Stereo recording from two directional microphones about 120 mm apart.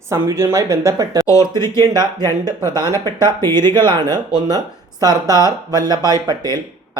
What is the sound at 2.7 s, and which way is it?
Speech, 20° left (ahead or behind).